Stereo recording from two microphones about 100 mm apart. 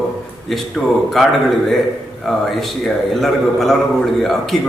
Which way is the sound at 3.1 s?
Centre (ahead or behind).